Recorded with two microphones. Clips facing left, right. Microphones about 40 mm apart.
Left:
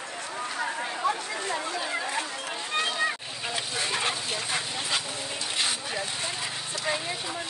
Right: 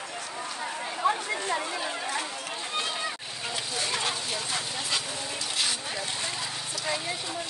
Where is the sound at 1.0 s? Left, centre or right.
Right.